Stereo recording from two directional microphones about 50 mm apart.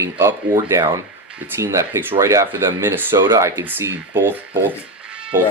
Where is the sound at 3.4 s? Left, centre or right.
Right.